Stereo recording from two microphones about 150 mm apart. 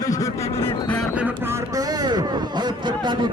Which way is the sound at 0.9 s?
5° left (ahead or behind).